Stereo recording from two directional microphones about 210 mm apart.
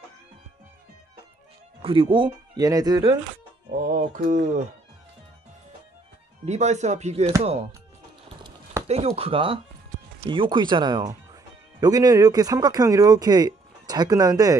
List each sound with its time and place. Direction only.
1.8 s speech: 25° right (ahead or behind)
3.8 s mantra: 40° right (ahead or behind)
6.4 s mantra: 35° right (ahead or behind)
8.8 s speech: 30° right (ahead or behind)